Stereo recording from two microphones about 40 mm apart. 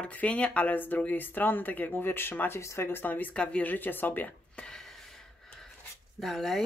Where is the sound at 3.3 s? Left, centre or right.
Left.